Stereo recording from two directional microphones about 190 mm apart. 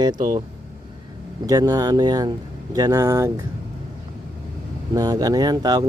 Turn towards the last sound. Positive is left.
turn(degrees=-20)  # may be behind; listen again after turning